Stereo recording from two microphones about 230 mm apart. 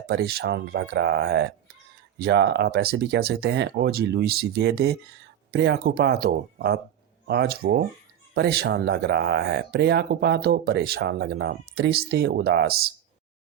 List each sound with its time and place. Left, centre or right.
0.1 s speech: right